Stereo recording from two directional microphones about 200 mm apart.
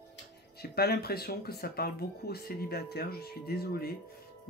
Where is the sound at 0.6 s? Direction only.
50° left (ahead or behind).